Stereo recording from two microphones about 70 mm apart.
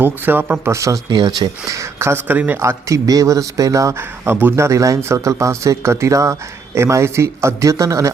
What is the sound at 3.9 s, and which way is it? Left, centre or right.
Speech, right.